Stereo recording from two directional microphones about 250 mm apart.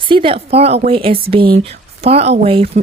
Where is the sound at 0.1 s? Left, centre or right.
Right.